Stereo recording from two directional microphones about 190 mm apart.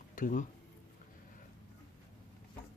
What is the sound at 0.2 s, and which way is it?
Speech, 45° left (ahead or behind).